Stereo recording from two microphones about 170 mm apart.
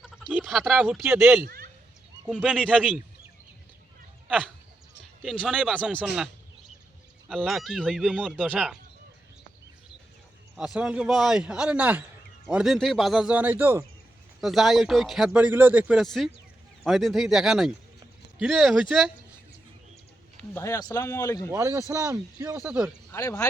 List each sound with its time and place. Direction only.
0.0 s speech: centre (ahead or behind)
2.4 s speech: 5° right (ahead or behind)
5.5 s speech: 5° right (ahead or behind)
5.7 s speech: 5° left (ahead or behind)
7.3 s speech: centre (ahead or behind)
10.6 s speech: 5° right (ahead or behind)
14.4 s speech: centre (ahead or behind)
20.3 s speech: 15° left (ahead or behind)
21.5 s speech: 20° right (ahead or behind)
23.1 s speech: 20° left (ahead or behind)